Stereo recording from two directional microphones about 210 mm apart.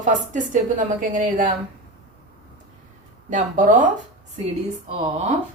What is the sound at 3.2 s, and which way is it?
Speech, 35° right (ahead or behind).